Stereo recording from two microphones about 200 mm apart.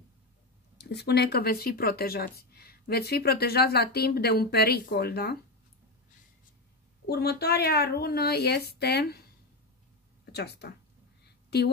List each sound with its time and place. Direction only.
0.7 s speech: 55° left (ahead or behind)
7.1 s speech: 55° left (ahead or behind)
10.2 s speech: 55° left (ahead or behind)